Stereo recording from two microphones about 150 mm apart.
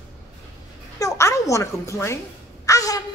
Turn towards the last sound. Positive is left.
turn(degrees=25)  # may be behind; listen again after turning